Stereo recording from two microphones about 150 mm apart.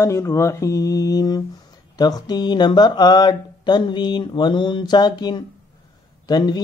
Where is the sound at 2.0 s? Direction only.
25° left (ahead or behind).